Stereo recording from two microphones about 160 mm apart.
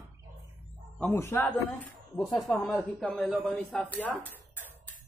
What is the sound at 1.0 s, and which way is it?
Speech, 15° left (ahead or behind).